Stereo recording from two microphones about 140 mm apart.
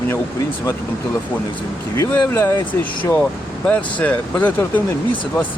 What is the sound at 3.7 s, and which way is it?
Speech, 10° left (ahead or behind).